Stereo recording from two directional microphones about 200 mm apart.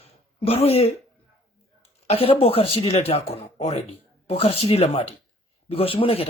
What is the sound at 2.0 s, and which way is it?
Speech, 30° left (ahead or behind).